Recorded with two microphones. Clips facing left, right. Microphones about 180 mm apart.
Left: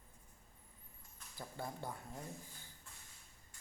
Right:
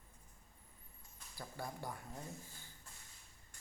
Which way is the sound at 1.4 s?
20° left (ahead or behind).